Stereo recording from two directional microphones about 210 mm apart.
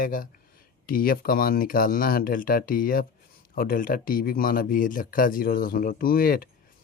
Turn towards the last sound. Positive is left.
turn(degrees=45)  # may be behind; listen again after turning